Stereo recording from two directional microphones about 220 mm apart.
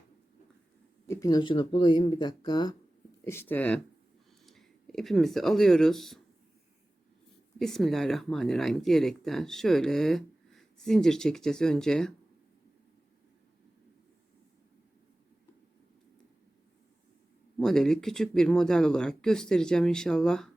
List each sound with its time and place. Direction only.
1.0 s speech: 15° left (ahead or behind)
7.6 s speech: centre (ahead or behind)
17.6 s speech: centre (ahead or behind)